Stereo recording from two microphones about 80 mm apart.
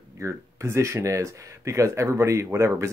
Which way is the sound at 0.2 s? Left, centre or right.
Right.